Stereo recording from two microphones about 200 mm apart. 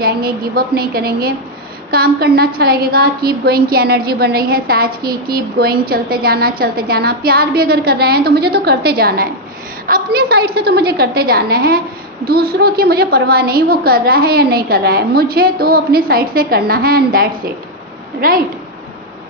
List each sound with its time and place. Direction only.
0.0 s a woman's voice: 50° right (ahead or behind)